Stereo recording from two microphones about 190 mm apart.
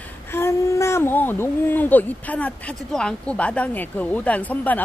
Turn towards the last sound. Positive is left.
turn(degrees=10)  # may be behind; listen again after turning